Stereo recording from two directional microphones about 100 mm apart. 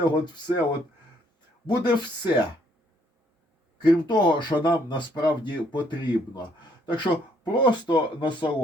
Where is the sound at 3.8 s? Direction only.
50° left (ahead or behind).